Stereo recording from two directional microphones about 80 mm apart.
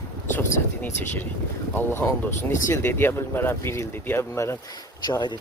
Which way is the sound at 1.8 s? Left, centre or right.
Left.